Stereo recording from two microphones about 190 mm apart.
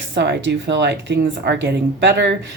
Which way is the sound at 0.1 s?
65° right (ahead or behind).